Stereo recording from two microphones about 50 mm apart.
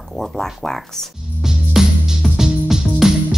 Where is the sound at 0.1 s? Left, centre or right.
Centre.